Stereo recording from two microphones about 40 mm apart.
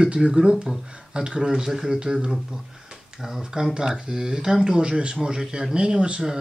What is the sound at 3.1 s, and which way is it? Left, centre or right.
Speech, centre.